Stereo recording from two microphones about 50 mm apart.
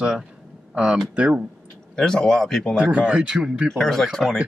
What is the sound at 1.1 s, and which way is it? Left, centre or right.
Speech, right.